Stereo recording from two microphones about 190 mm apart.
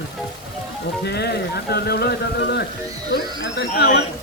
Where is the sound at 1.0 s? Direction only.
60° left (ahead or behind).